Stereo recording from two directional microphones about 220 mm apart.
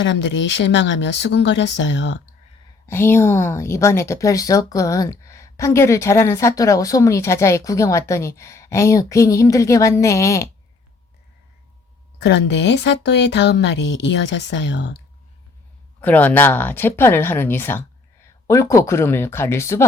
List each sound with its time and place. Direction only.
0.0 s speech: 55° left (ahead or behind)
2.8 s speech: 10° left (ahead or behind)
12.2 s speech: 50° left (ahead or behind)
16.0 s speech: 5° left (ahead or behind)